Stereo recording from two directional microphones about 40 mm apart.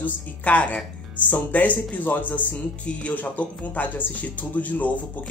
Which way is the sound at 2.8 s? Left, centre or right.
Left.